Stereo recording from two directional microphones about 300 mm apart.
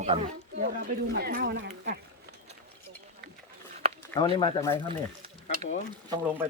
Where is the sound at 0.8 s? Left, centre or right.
Right.